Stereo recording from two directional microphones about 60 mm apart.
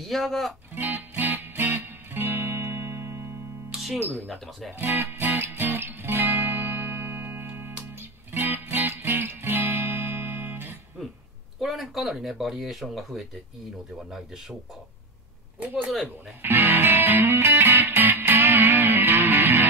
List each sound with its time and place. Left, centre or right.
0.0 s speech: centre
0.7 s music: right
3.7 s music: centre
4.3 s speech: centre
4.7 s music: right
11.6 s speech: centre
15.6 s speech: right
16.4 s music: right